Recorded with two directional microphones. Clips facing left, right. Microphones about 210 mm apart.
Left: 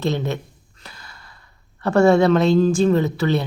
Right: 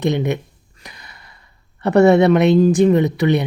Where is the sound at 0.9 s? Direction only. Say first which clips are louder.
Right 1 dB; 20° right (ahead or behind).